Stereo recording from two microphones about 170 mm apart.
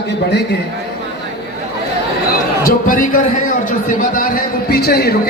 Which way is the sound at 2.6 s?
55° left (ahead or behind).